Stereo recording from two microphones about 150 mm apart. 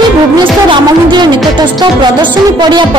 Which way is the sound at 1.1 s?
30° right (ahead or behind).